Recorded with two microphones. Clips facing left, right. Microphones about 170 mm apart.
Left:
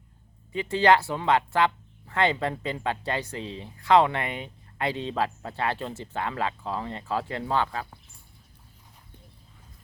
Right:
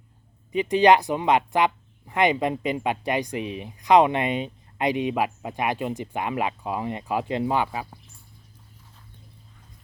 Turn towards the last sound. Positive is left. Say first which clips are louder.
# right 3 dB
turn(degrees=-15)  # may be behind; listen again after turning